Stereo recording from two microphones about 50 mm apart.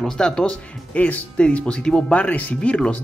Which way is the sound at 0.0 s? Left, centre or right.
Centre.